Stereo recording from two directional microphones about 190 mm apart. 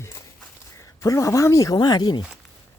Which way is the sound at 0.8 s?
15° left (ahead or behind).